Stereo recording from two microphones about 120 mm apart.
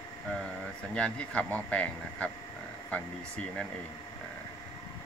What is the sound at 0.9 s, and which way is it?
Speech, 10° left (ahead or behind).